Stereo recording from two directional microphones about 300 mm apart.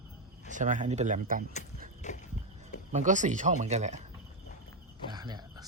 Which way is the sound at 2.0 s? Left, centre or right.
Left.